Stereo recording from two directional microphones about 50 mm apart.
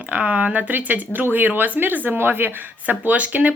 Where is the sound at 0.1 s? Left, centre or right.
Right.